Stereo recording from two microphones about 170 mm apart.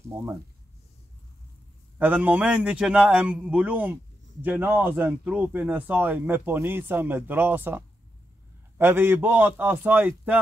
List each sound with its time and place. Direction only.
0.1 s speech: 15° right (ahead or behind)
2.0 s speech: 10° right (ahead or behind)